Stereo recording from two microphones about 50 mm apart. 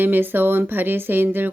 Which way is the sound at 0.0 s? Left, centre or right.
Right.